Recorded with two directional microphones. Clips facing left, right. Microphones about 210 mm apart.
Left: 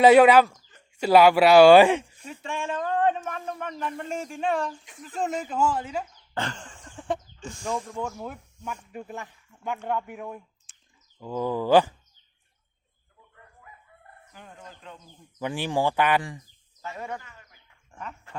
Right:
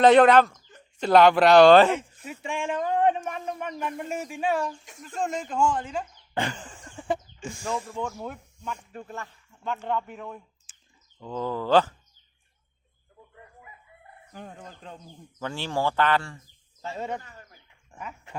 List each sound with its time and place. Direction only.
0.0 s speech: 10° left (ahead or behind)
2.0 s speech: 10° right (ahead or behind); by 6.1 s 5° left (ahead or behind)
6.3 s a sound: 10° right (ahead or behind)
8.2 s speech: 5° left (ahead or behind)
10.7 s bird: centre (ahead or behind)
11.2 s speech: 10° left (ahead or behind)
14.3 s chicken: 35° right (ahead or behind)
15.4 s speech: 15° left (ahead or behind)
16.8 s a man's voice: 25° right (ahead or behind)
17.2 s bird: 40° right (ahead or behind)
17.7 s bird: 15° right (ahead or behind)